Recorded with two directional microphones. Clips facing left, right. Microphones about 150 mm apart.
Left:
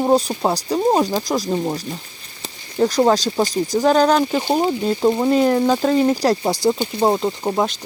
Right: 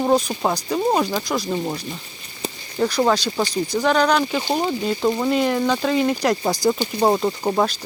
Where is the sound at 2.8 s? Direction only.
40° left (ahead or behind).